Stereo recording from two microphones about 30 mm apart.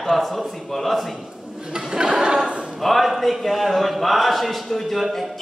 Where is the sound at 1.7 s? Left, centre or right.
Right.